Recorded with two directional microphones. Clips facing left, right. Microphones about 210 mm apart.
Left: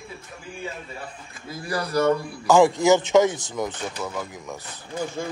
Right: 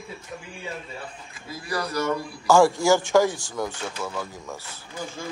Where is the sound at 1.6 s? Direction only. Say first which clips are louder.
Left 5 dB; 30° left (ahead or behind).